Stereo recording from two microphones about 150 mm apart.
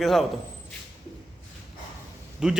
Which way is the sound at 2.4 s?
5° right (ahead or behind).